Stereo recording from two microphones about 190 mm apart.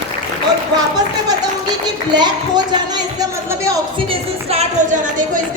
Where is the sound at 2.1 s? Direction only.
20° right (ahead or behind).